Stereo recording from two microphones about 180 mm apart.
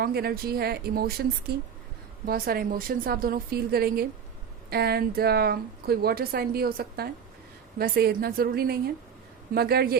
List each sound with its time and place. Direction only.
0.0 s a woman's voice: 60° right (ahead or behind)